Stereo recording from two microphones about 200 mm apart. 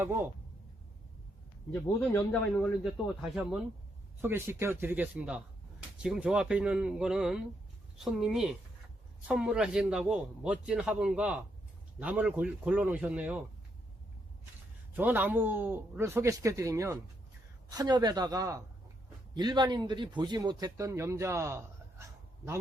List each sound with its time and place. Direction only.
0.0 s a man's voice: 10° right (ahead or behind)
1.7 s speech: 10° left (ahead or behind)
3.2 s a man's voice: centre (ahead or behind)
14.9 s a man's voice: 10° right (ahead or behind)